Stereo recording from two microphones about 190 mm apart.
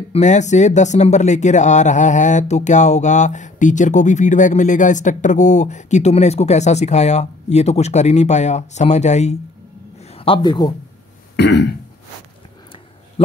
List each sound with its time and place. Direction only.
0.1 s a man's voice: 40° left (ahead or behind)
11.3 s throat clearing: 65° left (ahead or behind)